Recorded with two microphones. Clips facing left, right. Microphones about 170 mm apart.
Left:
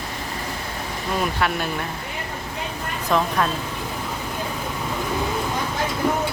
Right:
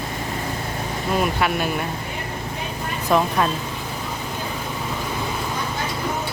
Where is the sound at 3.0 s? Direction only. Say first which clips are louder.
Right 2 dB; 10° right (ahead or behind).